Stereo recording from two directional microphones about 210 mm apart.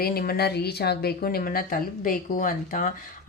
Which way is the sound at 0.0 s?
45° left (ahead or behind).